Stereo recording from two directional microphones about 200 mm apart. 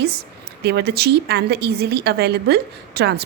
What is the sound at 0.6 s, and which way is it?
A woman's voice, 55° right (ahead or behind).